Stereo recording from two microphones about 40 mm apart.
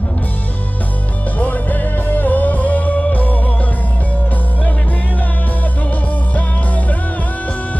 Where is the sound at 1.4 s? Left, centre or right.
Left.